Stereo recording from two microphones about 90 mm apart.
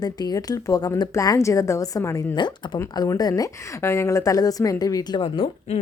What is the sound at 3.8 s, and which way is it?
Speech, 30° left (ahead or behind).